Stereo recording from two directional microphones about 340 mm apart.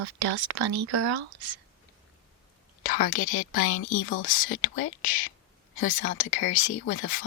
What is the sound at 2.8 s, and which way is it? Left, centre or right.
A woman's voice, left.